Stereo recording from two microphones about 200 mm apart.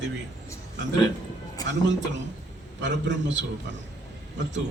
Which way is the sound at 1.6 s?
15° left (ahead or behind).